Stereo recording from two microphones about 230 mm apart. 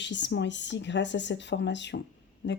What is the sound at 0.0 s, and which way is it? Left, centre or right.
A woman's voice, left.